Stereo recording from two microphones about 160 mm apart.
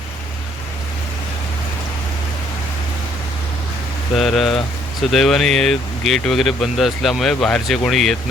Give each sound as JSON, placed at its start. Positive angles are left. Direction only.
{"t": 4.2, "sound": "speech", "side_deg": 0}